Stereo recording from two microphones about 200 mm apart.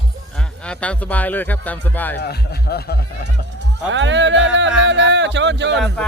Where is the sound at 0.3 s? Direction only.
5° left (ahead or behind).